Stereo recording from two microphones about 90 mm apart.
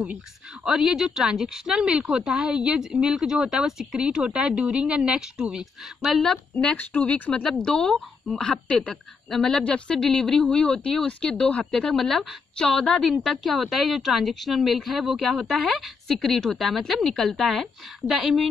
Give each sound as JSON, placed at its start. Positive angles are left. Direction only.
{"t": 0.7, "sound": "a woman's voice", "side_deg": -5}
{"t": 6.0, "sound": "a woman's voice", "side_deg": 0}
{"t": 6.6, "sound": "a woman's voice", "side_deg": 15}